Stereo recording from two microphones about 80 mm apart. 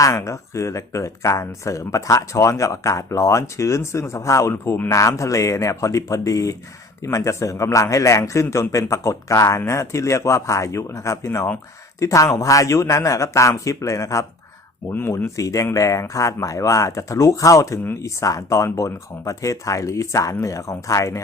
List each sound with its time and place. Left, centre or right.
0.0 s speech: left